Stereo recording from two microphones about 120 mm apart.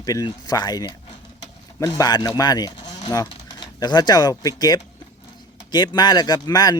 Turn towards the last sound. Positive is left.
turn(degrees=35)  # may be behind; listen again after turning